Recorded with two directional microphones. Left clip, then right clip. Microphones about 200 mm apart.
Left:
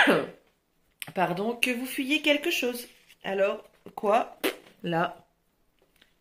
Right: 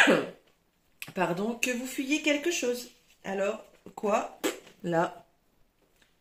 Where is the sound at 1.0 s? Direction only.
40° left (ahead or behind).